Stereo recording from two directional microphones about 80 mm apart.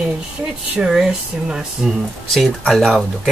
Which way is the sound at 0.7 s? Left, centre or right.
Centre.